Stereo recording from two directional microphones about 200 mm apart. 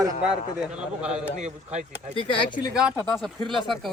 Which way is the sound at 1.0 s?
5° right (ahead or behind).